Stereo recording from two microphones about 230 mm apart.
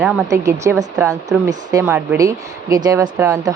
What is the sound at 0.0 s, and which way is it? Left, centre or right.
Speech, centre.